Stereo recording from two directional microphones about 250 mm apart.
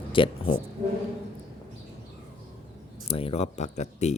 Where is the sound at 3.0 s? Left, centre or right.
Left.